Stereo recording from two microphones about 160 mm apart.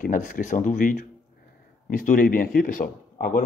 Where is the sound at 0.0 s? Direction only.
55° left (ahead or behind).